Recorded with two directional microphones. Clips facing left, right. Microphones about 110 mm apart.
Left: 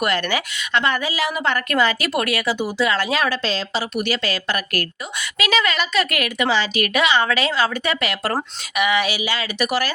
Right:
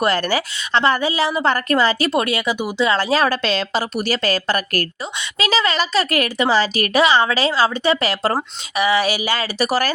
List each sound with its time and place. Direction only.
0.0 s a woman's voice: 35° right (ahead or behind)